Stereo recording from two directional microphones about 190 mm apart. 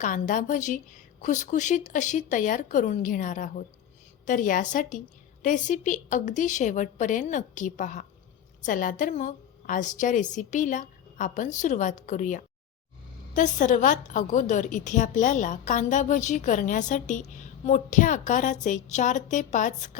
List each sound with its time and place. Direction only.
0.0 s a woman's voice: 45° left (ahead or behind)